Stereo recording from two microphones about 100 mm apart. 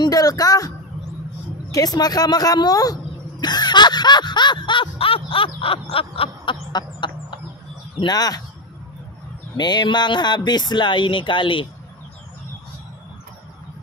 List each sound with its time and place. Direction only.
0.0 s a sound: 40° left (ahead or behind)
1.7 s speech: 40° left (ahead or behind); by 6.6 s 65° left (ahead or behind)
6.7 s bird: 50° left (ahead or behind)
8.0 s speech: 40° left (ahead or behind)
9.6 s speech: 45° left (ahead or behind)